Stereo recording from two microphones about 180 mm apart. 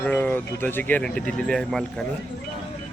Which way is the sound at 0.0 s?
10° left (ahead or behind).